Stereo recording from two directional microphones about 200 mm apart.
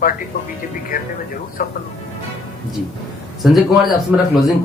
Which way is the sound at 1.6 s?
45° left (ahead or behind).